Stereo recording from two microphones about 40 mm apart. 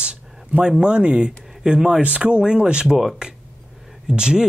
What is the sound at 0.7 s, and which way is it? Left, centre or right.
Speech, right.